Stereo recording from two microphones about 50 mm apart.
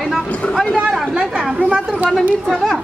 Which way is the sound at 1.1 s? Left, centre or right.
Centre.